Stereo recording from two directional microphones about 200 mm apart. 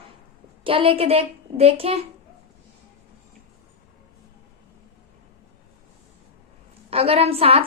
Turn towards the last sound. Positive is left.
turn(degrees=-30)  # may be behind; listen again after turning